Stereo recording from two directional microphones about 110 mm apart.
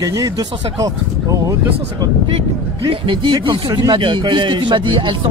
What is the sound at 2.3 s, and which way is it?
Speech, 55° right (ahead or behind).